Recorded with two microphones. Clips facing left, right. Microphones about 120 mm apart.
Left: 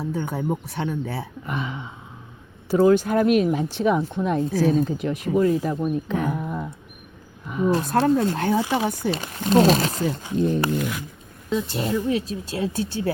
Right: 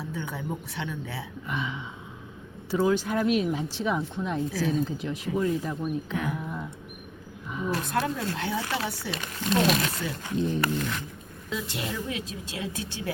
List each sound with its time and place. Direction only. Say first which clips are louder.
0.0 s speech: left 8 dB; 40° left (ahead or behind)
5.7 s speech: left 6 dB; 45° left (ahead or behind)
7.7 s speech: left 9 dB; 35° left (ahead or behind)
8.4 s speech: left 9 dB; 50° left (ahead or behind)
8.6 s speech: left 7 dB; 15° left (ahead or behind)
9.0 s speech: left 6 dB; 35° left (ahead or behind)
10.8 s speech: left 4 dB; 10° left (ahead or behind)
11.4 s speech: left 8 dB; 35° left (ahead or behind)